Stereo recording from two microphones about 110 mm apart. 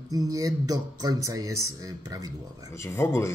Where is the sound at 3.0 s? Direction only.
25° left (ahead or behind).